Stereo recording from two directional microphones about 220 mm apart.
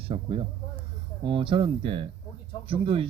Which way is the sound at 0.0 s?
25° right (ahead or behind).